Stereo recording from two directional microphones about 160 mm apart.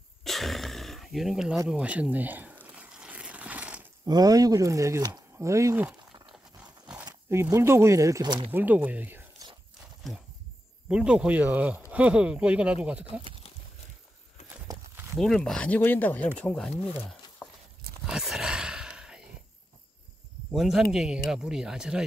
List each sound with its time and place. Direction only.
0.2 s a sound: centre (ahead or behind)
1.7 s crumpling: 10° right (ahead or behind)
4.0 s speech: 25° right (ahead or behind)
7.2 s speech: 20° right (ahead or behind)
8.5 s speech: 10° right (ahead or behind)
10.9 s speech: 5° right (ahead or behind)
14.7 s a sound: 20° right (ahead or behind)
15.1 s speech: 5° left (ahead or behind)
17.4 s a sound: 5° right (ahead or behind)
20.5 s speech: centre (ahead or behind)